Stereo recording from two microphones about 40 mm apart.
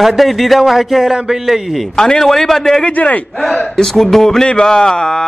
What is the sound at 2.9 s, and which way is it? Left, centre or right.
Speech, left.